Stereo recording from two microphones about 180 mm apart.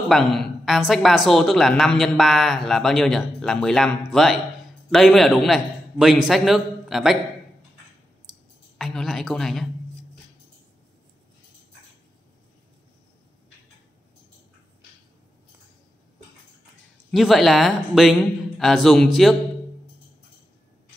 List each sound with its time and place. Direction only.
0.1 s a woman's voice: centre (ahead or behind)
8.7 s a woman's voice: centre (ahead or behind)
17.1 s a woman's voice: centre (ahead or behind)